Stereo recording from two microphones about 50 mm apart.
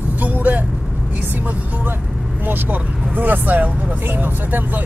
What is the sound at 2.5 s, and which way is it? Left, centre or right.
Speech, right.